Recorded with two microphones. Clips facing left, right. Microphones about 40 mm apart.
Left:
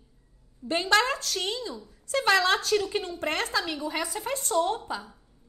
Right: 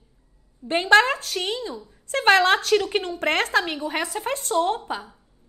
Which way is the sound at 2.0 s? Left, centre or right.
Right.